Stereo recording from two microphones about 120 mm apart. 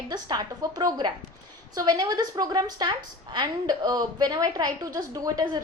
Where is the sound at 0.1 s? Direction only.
35° right (ahead or behind).